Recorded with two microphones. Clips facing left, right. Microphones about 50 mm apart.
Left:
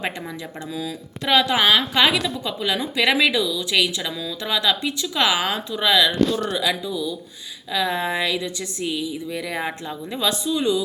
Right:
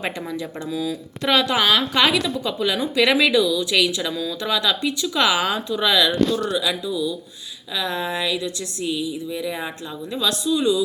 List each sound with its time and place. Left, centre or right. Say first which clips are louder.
0.7 s speech: right 4 dB; centre
1.2 s a woman's voice: left 1 dB; centre
6.5 s speech: even; left
6.8 s speech: right 2 dB; centre
9.3 s speech: right 2 dB; left
9.6 s speech: left 2 dB; left